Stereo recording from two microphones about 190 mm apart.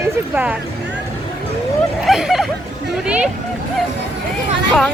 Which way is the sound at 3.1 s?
5° right (ahead or behind).